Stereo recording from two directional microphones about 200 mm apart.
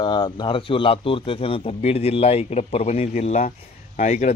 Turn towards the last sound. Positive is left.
turn(degrees=35)  # may be behind; listen again after turning